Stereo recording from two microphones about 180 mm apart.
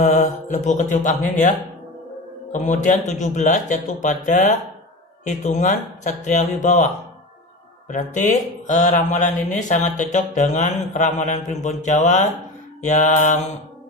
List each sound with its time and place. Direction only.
0.0 s speech: 45° left (ahead or behind)